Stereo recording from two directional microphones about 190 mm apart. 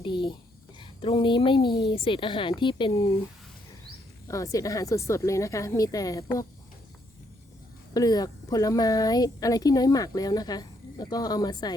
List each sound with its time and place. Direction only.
0.0 s a sound: 25° left (ahead or behind)
0.8 s speech: 25° left (ahead or behind)
4.3 s speech: 15° left (ahead or behind)
7.9 s speech: 20° left (ahead or behind)